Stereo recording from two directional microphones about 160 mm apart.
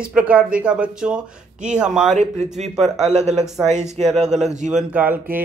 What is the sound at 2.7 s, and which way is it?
Speech, centre (ahead or behind).